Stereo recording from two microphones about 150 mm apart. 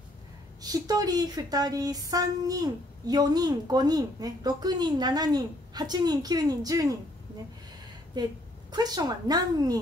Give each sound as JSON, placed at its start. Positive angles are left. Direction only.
{"t": 0.6, "sound": "speech", "side_deg": -25}
{"t": 8.2, "sound": "speech", "side_deg": -30}